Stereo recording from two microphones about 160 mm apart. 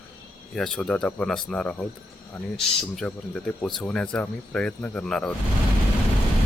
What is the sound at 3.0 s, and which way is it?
Speech, 5° left (ahead or behind).